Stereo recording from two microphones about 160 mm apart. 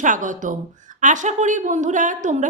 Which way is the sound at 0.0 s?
55° right (ahead or behind).